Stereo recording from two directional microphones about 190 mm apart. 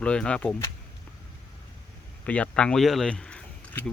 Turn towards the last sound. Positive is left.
turn(degrees=5)  # may be behind; listen again after turning